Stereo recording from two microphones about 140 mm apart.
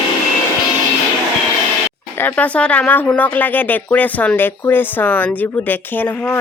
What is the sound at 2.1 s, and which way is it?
Speech, 10° left (ahead or behind).